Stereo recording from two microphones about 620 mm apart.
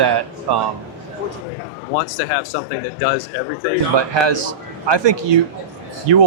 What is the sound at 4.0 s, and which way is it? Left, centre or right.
A man's voice, right.